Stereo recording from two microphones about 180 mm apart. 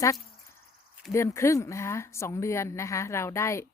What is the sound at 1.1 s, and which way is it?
A woman's voice, 15° left (ahead or behind).